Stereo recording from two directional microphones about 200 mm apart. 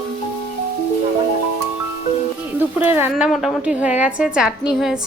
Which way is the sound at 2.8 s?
10° right (ahead or behind).